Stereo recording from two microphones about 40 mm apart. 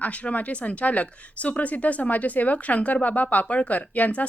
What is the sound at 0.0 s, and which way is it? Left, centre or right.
Speech, left.